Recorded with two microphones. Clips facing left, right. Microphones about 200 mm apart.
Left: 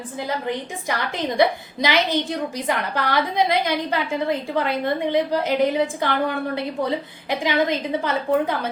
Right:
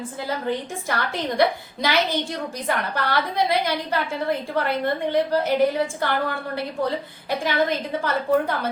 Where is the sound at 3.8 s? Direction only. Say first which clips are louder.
Left 2 dB; 15° left (ahead or behind).